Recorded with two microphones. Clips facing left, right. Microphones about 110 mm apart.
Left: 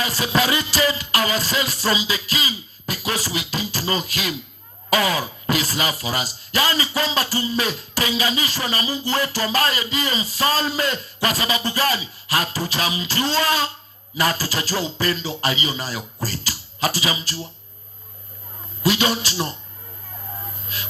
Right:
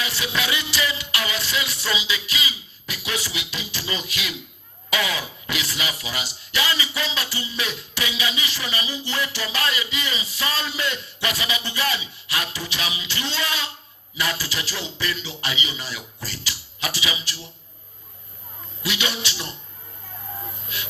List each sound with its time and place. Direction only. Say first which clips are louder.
0.0 s music: left 6 dB; 40° left (ahead or behind)
4.9 s speech: left 6 dB; 40° left (ahead or behind)
18.8 s speech: left 8 dB; 40° left (ahead or behind)
20.7 s speech: even; 40° left (ahead or behind)